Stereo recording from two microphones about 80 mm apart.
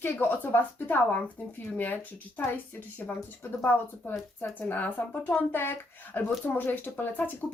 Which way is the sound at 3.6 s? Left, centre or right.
Left.